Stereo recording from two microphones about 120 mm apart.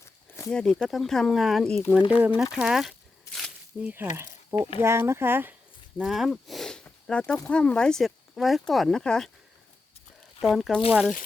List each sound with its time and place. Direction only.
0.0 s a sound: 25° left (ahead or behind)
0.5 s speech: 5° left (ahead or behind)
2.0 s speech: 45° left (ahead or behind)
2.4 s speech: 5° right (ahead or behind)
3.8 s speech: 15° right (ahead or behind)
6.0 s speech: centre (ahead or behind)
10.4 s speech: centre (ahead or behind)